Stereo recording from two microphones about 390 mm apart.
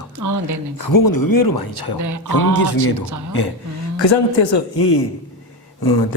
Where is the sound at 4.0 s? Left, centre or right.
Left.